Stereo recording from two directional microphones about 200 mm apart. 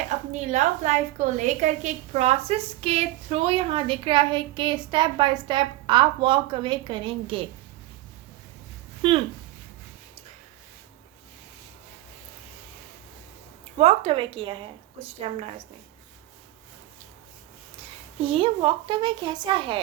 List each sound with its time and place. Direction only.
0.3 s a woman's voice: 35° right (ahead or behind)
9.0 s speech: 25° right (ahead or behind)
13.7 s a woman's voice: 30° right (ahead or behind)
18.2 s a woman's voice: 25° right (ahead or behind)